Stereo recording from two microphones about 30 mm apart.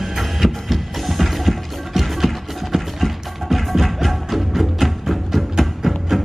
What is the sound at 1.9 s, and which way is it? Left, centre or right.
Music, centre.